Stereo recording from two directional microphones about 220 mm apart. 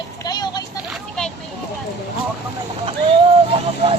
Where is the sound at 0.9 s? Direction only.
5° left (ahead or behind).